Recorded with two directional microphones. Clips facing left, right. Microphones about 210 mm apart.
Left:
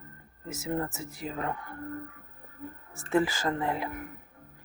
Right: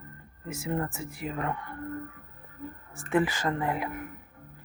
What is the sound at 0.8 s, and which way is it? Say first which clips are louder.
Speech: right 1 dB; 25° left (ahead or behind).